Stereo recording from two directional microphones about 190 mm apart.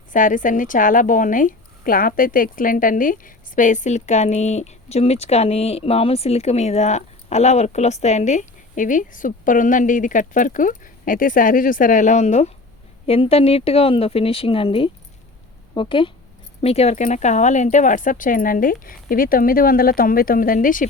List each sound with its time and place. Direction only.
0.1 s speech: 45° left (ahead or behind)